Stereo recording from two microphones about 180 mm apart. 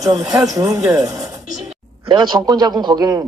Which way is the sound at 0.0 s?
20° right (ahead or behind).